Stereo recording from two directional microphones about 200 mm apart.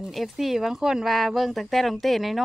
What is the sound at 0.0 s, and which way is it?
Speech, centre (ahead or behind).